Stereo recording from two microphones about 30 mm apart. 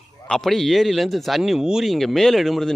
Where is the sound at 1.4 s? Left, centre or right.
Centre.